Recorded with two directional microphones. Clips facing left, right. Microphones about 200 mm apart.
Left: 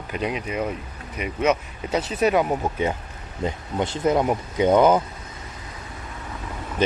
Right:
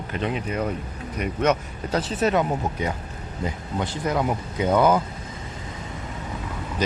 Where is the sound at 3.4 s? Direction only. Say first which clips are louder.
Left 3 dB; 20° left (ahead or behind).